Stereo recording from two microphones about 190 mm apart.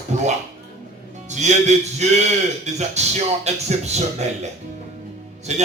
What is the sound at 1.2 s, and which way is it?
Speech, 40° right (ahead or behind).